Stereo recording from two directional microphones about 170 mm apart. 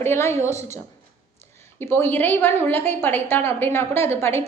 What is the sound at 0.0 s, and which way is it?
Speech, 15° left (ahead or behind).